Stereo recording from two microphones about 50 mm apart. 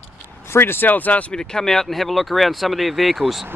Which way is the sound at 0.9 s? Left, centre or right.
Left.